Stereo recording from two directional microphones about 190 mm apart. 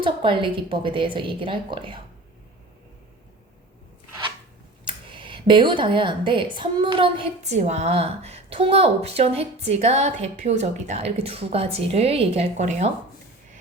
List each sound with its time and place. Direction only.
0.0 s a woman's voice: 25° right (ahead or behind)
4.9 s speech: 25° right (ahead or behind)